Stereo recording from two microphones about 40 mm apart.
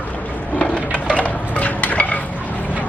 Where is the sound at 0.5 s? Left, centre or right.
Left.